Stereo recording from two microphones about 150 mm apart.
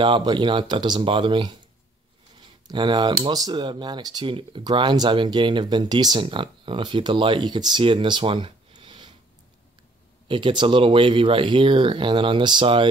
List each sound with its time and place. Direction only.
0.0 s speech: 30° right (ahead or behind)
10.2 s speech: 35° right (ahead or behind)